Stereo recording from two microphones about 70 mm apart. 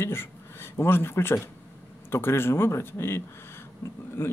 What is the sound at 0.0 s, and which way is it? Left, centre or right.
A man's voice, left.